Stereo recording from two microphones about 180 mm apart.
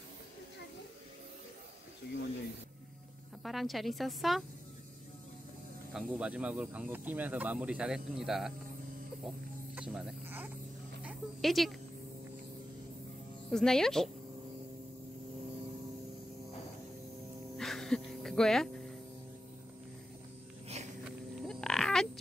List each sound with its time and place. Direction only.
3.4 s a woman's voice: centre (ahead or behind)
5.9 s speech: 5° right (ahead or behind)
9.8 s speech: 5° right (ahead or behind)
13.5 s a woman's voice: 5° left (ahead or behind)
17.6 s music: centre (ahead or behind)
20.6 s a sound: 35° right (ahead or behind)
21.0 s livestock: 5° left (ahead or behind)